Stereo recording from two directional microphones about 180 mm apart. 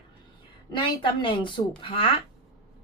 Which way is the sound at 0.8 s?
25° left (ahead or behind).